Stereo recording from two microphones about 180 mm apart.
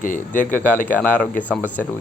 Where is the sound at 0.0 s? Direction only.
45° left (ahead or behind).